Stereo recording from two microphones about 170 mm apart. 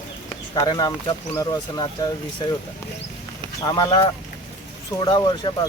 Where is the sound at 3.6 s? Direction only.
25° left (ahead or behind).